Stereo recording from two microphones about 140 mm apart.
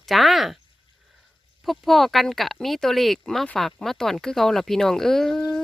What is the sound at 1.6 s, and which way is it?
Speech, centre (ahead or behind).